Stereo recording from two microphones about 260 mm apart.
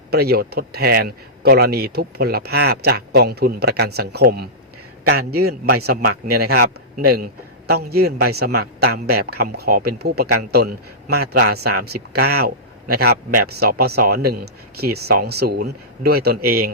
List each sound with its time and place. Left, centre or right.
0.1 s speech: right
5.4 s a man's voice: right
5.7 s speech: right